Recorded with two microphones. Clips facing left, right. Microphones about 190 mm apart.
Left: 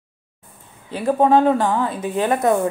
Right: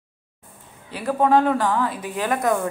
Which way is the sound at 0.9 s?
25° left (ahead or behind).